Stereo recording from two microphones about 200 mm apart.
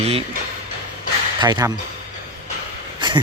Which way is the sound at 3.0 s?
20° right (ahead or behind).